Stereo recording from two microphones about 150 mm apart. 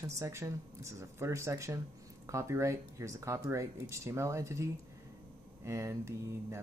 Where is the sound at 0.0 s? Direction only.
20° right (ahead or behind).